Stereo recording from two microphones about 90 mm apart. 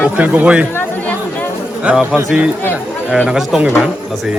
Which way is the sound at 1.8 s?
10° right (ahead or behind).